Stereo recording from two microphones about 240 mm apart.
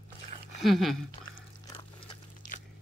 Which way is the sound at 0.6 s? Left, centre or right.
Centre.